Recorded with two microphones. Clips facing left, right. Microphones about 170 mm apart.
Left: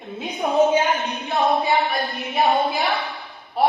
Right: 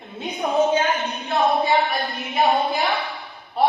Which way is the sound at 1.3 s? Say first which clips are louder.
Right 1 dB; centre (ahead or behind).